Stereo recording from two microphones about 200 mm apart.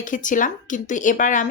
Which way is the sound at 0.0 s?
40° left (ahead or behind).